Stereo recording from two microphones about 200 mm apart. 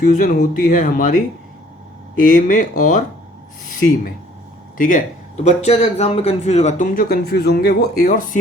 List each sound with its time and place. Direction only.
0.1 s a man's voice: 45° left (ahead or behind)
4.8 s a man's voice: 40° left (ahead or behind)